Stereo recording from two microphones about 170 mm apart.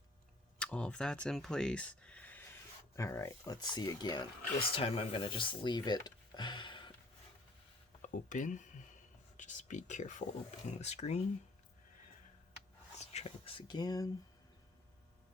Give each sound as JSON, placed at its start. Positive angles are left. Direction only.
{"t": 0.6, "sound": "speech", "side_deg": 5}
{"t": 4.7, "sound": "speech", "side_deg": 35}
{"t": 8.0, "sound": "speech", "side_deg": 50}
{"t": 13.0, "sound": "speech", "side_deg": 35}